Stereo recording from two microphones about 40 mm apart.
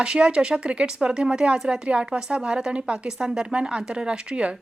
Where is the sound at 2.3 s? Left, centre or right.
Right.